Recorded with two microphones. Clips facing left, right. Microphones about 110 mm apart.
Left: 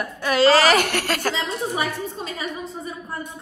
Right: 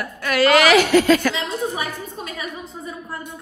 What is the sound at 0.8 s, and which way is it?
Speech, 60° left (ahead or behind).